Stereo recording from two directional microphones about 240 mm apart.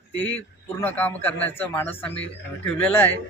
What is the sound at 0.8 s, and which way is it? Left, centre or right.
Speech, centre.